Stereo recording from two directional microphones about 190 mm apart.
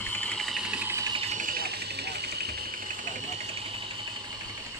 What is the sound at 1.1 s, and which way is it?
Insect, 40° right (ahead or behind).